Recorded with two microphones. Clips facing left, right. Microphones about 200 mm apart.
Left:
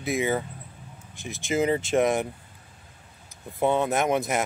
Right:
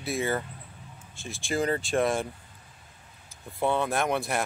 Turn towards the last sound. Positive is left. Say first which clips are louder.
# left 3 dB
turn(degrees=20)  # may be behind; listen again after turning